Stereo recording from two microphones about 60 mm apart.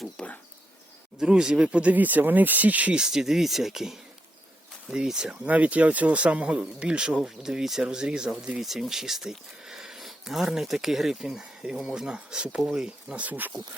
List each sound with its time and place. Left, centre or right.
0.2 s speech: centre
1.2 s speech: centre
3.0 s speech: centre
5.5 s speech: right
13.2 s speech: right